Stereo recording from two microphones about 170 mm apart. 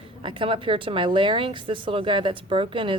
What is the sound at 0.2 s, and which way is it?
Speech, 30° right (ahead or behind).